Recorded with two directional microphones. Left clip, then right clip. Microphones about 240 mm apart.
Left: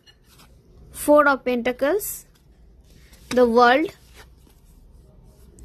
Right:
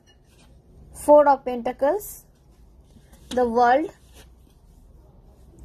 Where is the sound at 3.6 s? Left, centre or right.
Left.